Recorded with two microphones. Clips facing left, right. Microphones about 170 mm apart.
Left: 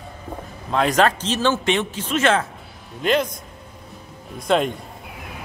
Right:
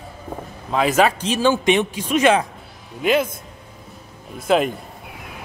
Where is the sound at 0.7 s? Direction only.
5° right (ahead or behind).